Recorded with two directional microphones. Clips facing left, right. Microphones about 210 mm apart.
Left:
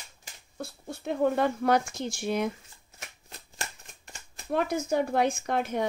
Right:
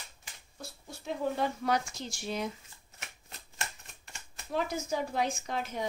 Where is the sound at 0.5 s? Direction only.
60° left (ahead or behind).